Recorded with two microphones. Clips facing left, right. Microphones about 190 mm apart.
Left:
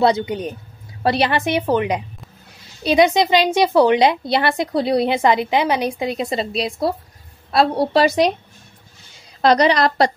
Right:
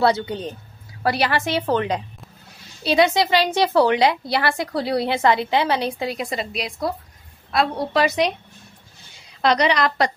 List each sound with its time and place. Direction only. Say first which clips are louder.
0.0 s a woman's voice: left 3 dB; 20° left (ahead or behind); by 8.3 s 35° left (ahead or behind)
9.4 s a woman's voice: left 4 dB; 40° left (ahead or behind)